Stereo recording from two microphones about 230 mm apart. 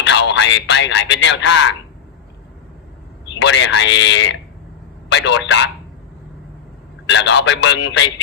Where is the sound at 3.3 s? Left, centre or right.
Left.